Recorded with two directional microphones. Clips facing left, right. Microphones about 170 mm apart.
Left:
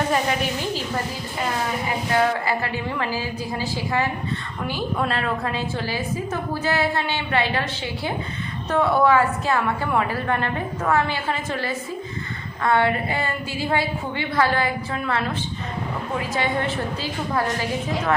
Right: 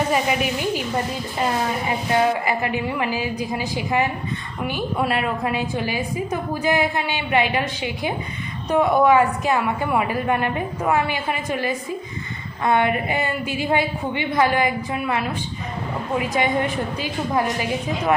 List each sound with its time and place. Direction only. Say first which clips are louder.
0.1 s a woman's voice: right 2 dB; 10° right (ahead or behind)
2.1 s a woman's voice: right 1 dB; 15° right (ahead or behind)